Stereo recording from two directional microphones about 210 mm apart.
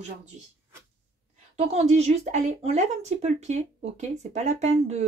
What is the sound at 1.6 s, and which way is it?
Speech, 30° right (ahead or behind).